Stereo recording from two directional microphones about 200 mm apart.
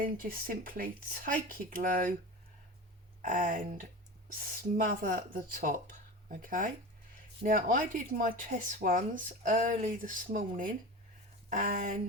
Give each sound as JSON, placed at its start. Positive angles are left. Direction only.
{"t": 0.0, "sound": "speech", "side_deg": -45}
{"t": 3.2, "sound": "speech", "side_deg": -40}